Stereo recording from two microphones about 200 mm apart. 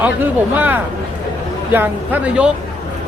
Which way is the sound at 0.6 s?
10° right (ahead or behind).